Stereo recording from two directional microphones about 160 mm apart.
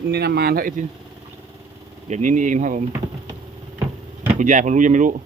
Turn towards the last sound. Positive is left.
turn(degrees=-55)  # may be behind; listen again after turning